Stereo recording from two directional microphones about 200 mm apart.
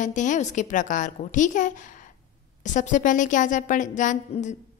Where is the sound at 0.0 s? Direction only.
40° left (ahead or behind).